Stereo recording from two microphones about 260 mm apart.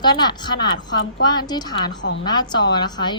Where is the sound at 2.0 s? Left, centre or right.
Left.